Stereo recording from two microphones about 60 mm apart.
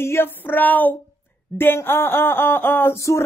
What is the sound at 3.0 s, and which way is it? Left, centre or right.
Music, left.